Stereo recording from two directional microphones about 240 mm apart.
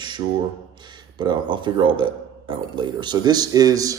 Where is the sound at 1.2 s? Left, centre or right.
Centre.